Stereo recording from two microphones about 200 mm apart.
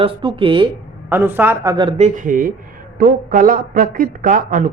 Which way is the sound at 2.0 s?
40° right (ahead or behind).